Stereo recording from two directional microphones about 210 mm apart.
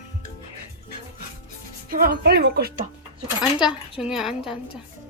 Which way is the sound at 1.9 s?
45° right (ahead or behind).